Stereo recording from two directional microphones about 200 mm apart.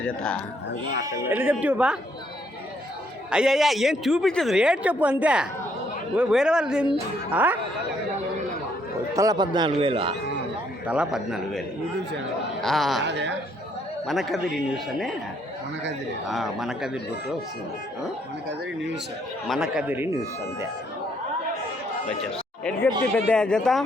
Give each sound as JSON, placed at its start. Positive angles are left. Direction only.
{"t": 0.0, "sound": "a man's voice", "side_deg": 5}
{"t": 1.0, "sound": "a man's voice", "side_deg": -15}
{"t": 3.2, "sound": "a man's voice", "side_deg": -5}
{"t": 9.1, "sound": "speech", "side_deg": -20}
{"t": 10.8, "sound": "a man's voice", "side_deg": -5}
{"t": 12.6, "sound": "a man's voice", "side_deg": 0}
{"t": 13.0, "sound": "a woman's voice", "side_deg": -60}
{"t": 14.1, "sound": "a man's voice", "side_deg": 0}
{"t": 16.3, "sound": "a man's voice", "side_deg": 0}
{"t": 19.5, "sound": "a man's voice", "side_deg": -5}
{"t": 23.1, "sound": "a man's voice", "side_deg": 5}